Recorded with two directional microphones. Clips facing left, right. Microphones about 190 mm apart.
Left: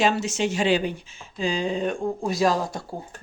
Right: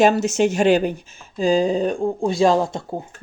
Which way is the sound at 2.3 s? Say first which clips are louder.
Right 5 dB; 25° right (ahead or behind).